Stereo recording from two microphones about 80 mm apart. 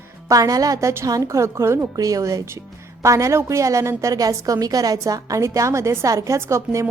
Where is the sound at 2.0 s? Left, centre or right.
Right.